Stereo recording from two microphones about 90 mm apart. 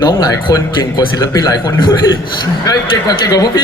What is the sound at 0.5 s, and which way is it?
Speech, 40° left (ahead or behind).